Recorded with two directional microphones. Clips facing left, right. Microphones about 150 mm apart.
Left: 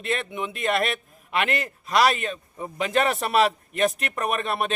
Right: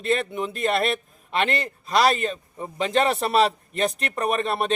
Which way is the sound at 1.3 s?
30° right (ahead or behind).